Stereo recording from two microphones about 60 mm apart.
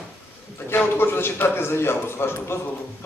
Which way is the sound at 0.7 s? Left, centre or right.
Left.